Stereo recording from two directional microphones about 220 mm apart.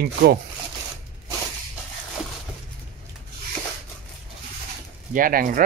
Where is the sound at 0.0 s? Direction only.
45° right (ahead or behind).